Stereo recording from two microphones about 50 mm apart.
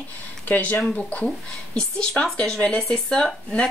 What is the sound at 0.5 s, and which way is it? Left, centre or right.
Speech, left.